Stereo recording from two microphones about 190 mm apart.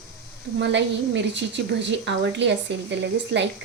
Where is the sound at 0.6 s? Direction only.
65° right (ahead or behind).